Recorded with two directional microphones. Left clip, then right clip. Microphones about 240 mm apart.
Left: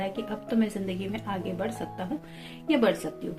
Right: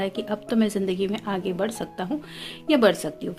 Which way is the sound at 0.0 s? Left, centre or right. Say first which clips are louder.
Right 5 dB; right.